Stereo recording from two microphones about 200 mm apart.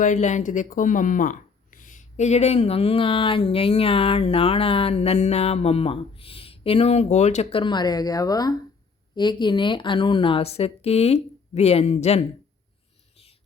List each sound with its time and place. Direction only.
0.0 s speech: 35° left (ahead or behind)